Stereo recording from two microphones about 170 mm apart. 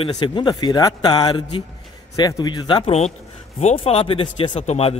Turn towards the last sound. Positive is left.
turn(degrees=35)  # may be behind; listen again after turning